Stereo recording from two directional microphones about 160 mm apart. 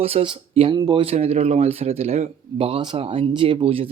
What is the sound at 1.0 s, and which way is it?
Speech, 40° right (ahead or behind).